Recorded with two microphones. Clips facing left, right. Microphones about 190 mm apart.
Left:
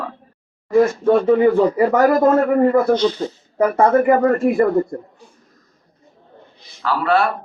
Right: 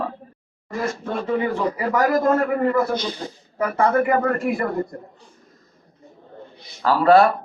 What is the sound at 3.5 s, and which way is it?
Speech, 30° left (ahead or behind).